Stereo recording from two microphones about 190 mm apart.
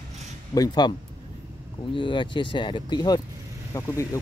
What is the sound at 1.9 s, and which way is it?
Speech, 25° left (ahead or behind).